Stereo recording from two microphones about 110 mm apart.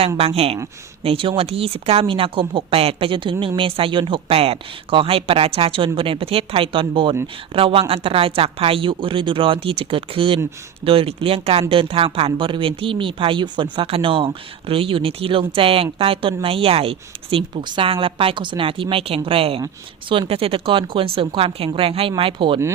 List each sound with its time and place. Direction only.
0.2 s speech: 65° right (ahead or behind)